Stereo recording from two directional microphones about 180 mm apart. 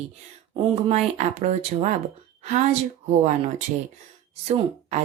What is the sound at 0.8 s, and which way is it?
A woman's voice, 40° right (ahead or behind).